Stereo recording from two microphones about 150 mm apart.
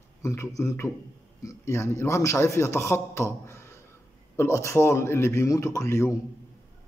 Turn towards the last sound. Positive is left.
turn(degrees=20)  # may be behind; listen again after turning